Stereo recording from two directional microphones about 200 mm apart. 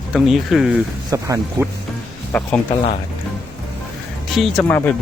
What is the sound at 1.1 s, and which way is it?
Speech, 15° right (ahead or behind).